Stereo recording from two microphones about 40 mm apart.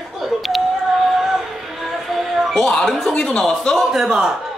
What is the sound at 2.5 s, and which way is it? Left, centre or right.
Speech, centre.